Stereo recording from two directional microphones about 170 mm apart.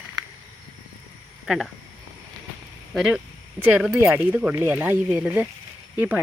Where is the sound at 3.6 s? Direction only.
5° right (ahead or behind).